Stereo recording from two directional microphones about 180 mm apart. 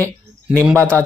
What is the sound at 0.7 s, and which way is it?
Speech, 15° right (ahead or behind).